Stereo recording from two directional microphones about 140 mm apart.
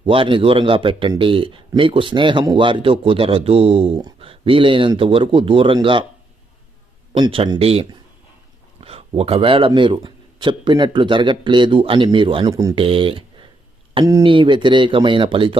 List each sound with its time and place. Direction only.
0.0 s speech: 40° right (ahead or behind)
7.1 s speech: 40° right (ahead or behind)
12.5 s speech: 25° right (ahead or behind)
12.7 s speech: 40° right (ahead or behind)
14.0 s speech: 20° right (ahead or behind)
14.3 s speech: 35° right (ahead or behind)